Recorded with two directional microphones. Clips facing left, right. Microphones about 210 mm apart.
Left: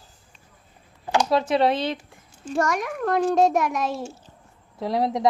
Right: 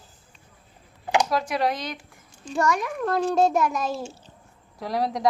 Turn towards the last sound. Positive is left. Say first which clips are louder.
# left 3 dB
turn(degrees=25)  # may be behind; listen again after turning